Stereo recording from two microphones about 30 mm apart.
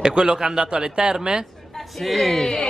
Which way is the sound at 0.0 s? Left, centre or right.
Right.